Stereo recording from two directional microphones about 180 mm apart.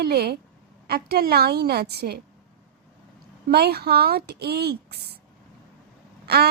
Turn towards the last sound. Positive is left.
turn(degrees=-65)  # may be behind; listen again after turning